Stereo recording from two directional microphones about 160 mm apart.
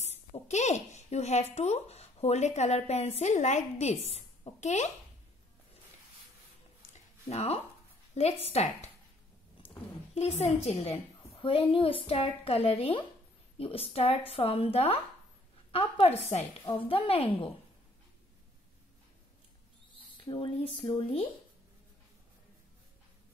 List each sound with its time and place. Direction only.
0.0 s speech: 45° left (ahead or behind)
6.9 s a sound: 40° left (ahead or behind)
8.1 s a woman's voice: 40° left (ahead or behind)
10.1 s a woman's voice: 40° left (ahead or behind)
20.2 s a woman's voice: 30° left (ahead or behind)